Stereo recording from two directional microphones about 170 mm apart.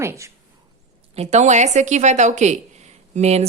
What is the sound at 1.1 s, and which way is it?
A woman's voice, 40° right (ahead or behind).